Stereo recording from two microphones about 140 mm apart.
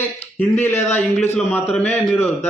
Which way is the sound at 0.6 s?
15° left (ahead or behind).